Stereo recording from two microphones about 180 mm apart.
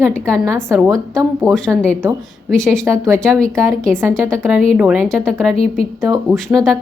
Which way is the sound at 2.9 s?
15° right (ahead or behind).